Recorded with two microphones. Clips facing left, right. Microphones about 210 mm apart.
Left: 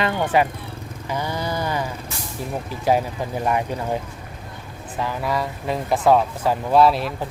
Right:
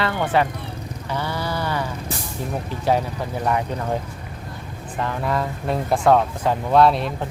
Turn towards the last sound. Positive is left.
turn(degrees=5)  # may be behind; listen again after turning